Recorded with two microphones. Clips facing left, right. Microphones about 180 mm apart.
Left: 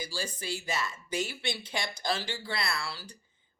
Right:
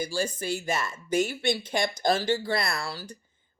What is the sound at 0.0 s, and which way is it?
Speech, 50° right (ahead or behind).